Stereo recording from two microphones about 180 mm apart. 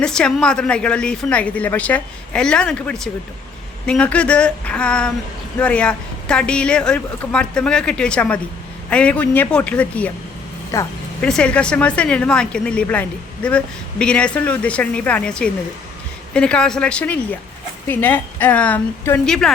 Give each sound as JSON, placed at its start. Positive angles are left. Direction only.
{"t": 0.0, "sound": "a woman's voice", "side_deg": 5}
{"t": 11.2, "sound": "a woman's voice", "side_deg": 5}